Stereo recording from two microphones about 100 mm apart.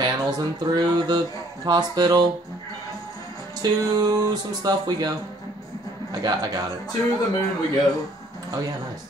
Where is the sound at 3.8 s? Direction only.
40° right (ahead or behind).